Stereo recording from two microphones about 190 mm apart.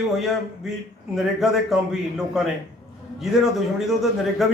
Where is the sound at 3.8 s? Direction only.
Centre (ahead or behind).